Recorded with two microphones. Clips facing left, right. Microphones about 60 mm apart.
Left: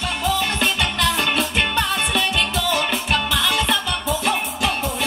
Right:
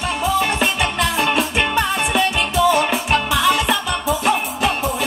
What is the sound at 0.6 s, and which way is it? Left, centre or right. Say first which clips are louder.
Music: right 2 dB; centre.